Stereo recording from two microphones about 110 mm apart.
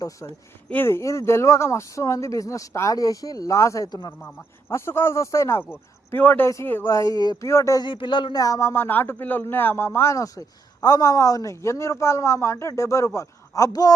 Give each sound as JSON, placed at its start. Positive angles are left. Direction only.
{"t": 0.7, "sound": "speech", "side_deg": 20}
{"t": 4.2, "sound": "speech", "side_deg": 20}
{"t": 7.9, "sound": "speech", "side_deg": 50}
{"t": 8.4, "sound": "speech", "side_deg": 30}